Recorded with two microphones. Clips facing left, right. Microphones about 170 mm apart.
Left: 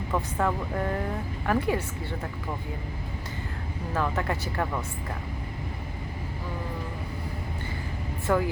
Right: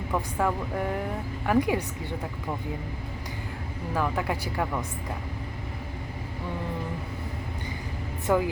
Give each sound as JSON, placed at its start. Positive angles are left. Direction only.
{"t": 0.1, "sound": "speech", "side_deg": -10}
{"t": 3.9, "sound": "speech", "side_deg": -10}
{"t": 8.3, "sound": "speech", "side_deg": -15}